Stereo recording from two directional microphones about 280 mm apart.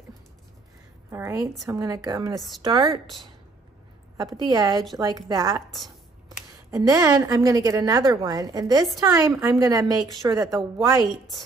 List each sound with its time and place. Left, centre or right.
1.1 s a woman's voice: centre
4.2 s a woman's voice: centre
6.7 s a woman's voice: centre